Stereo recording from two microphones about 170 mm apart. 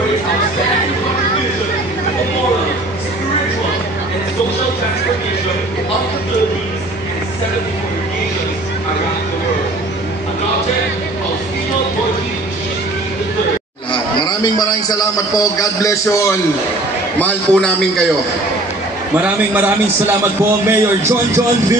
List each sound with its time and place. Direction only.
14.2 s a man's voice: 20° left (ahead or behind)
17.2 s a man's voice: 5° left (ahead or behind)
19.2 s a man's voice: 10° right (ahead or behind)